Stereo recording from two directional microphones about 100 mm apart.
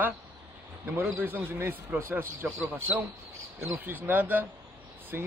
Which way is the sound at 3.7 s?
20° right (ahead or behind).